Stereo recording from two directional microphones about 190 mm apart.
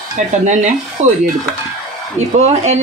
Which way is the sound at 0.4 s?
40° right (ahead or behind).